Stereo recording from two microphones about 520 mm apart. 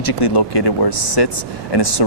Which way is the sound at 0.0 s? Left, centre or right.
Left.